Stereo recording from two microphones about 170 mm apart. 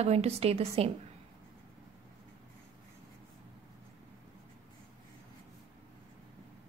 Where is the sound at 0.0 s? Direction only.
40° right (ahead or behind).